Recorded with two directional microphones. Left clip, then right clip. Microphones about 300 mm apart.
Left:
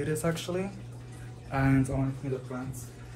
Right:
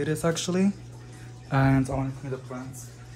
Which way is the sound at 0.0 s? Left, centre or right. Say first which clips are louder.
Right 4 dB; right.